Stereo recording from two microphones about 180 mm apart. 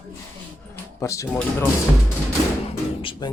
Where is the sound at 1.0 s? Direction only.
15° left (ahead or behind).